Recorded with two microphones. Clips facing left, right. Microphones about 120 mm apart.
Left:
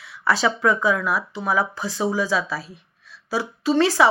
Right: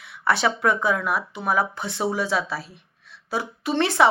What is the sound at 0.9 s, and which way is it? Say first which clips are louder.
Speech: left 1 dB; 55° right (ahead or behind).